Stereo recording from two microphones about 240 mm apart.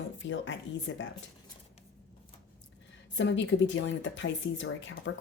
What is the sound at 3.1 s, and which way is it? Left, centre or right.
Speech, left.